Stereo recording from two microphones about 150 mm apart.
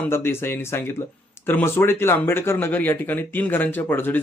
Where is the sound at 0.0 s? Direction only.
15° left (ahead or behind).